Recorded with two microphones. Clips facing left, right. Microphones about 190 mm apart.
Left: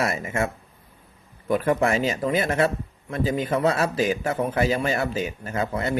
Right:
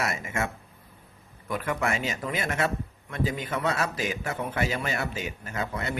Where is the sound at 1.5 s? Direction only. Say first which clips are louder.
Left 8 dB; 30° left (ahead or behind).